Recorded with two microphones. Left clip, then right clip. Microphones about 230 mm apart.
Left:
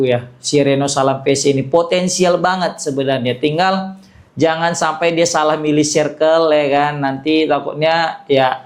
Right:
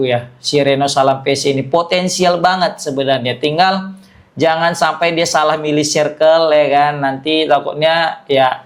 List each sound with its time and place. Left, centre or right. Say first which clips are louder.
0.0 s speech: even; right